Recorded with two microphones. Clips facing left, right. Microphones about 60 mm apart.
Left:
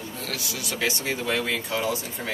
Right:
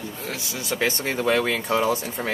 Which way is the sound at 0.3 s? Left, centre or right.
Right.